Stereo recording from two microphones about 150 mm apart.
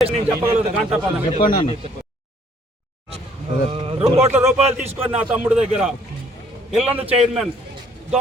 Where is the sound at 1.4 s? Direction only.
30° left (ahead or behind).